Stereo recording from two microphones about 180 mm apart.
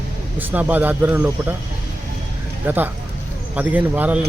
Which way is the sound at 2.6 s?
10° right (ahead or behind).